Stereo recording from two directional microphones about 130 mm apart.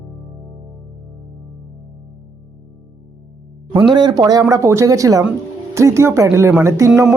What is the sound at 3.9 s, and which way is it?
Speech, 35° right (ahead or behind).